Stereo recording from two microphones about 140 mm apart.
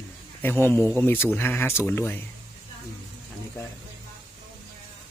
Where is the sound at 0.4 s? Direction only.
15° left (ahead or behind).